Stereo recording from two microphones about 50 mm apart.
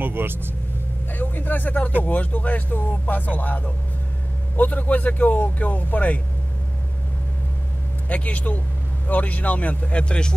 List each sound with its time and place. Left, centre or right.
0.0 s speech: right
1.1 s speech: left
8.1 s speech: left